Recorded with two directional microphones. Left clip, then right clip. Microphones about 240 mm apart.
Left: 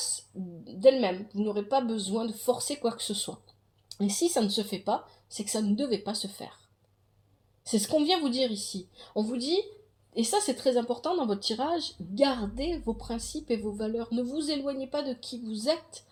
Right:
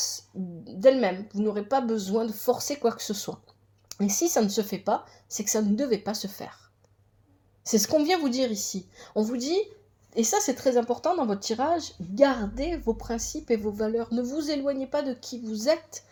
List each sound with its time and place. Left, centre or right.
0.6 s a woman's voice: right
7.6 s a woman's voice: right